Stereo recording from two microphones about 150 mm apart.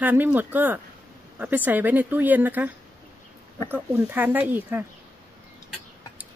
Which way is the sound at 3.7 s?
10° right (ahead or behind).